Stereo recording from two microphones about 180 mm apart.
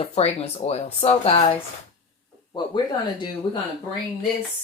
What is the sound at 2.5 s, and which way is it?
Speech, 25° left (ahead or behind).